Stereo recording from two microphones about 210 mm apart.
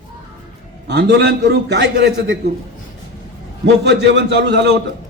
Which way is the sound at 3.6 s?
55° right (ahead or behind).